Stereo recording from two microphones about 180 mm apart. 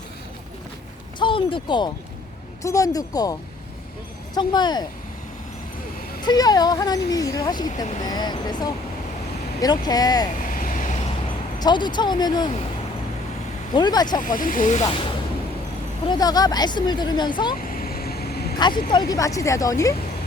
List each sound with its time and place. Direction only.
1.2 s speech: 30° left (ahead or behind)
4.4 s speech: 25° left (ahead or behind)
6.2 s speech: 20° left (ahead or behind)
10.3 s vehicle: 45° left (ahead or behind)
11.6 s speech: 25° left (ahead or behind)
13.7 s speech: 25° left (ahead or behind)
14.2 s speech: 50° left (ahead or behind)
16.0 s speech: 20° left (ahead or behind)
17.6 s vehicle: 50° left (ahead or behind)
18.9 s speech: 20° left (ahead or behind)